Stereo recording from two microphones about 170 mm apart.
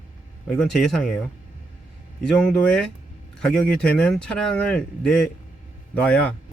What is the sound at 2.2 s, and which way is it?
Speech, 5° left (ahead or behind).